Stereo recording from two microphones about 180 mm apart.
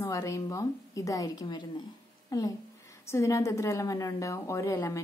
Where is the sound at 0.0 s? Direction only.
15° left (ahead or behind).